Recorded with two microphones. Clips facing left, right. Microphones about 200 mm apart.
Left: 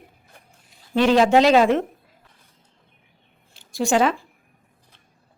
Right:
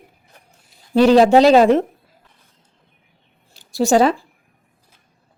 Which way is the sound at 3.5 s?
40° right (ahead or behind).